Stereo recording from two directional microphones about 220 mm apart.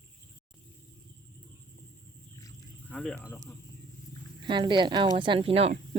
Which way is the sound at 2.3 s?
15° left (ahead or behind).